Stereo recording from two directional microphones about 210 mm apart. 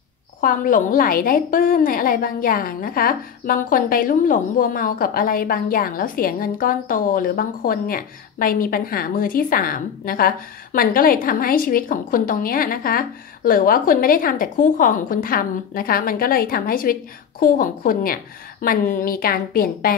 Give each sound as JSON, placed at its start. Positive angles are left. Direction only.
{"t": 0.4, "sound": "a woman's voice", "side_deg": 40}